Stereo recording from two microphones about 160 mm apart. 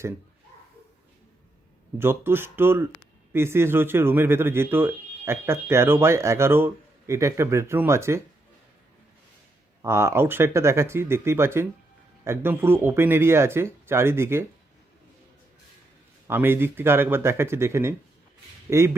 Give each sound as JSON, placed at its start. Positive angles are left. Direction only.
{"t": 2.0, "sound": "speech", "side_deg": -15}
{"t": 9.8, "sound": "speech", "side_deg": -15}
{"t": 16.2, "sound": "speech", "side_deg": -15}